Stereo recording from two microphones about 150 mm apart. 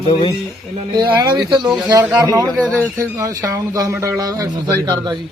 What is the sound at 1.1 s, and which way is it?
Speech, 25° right (ahead or behind).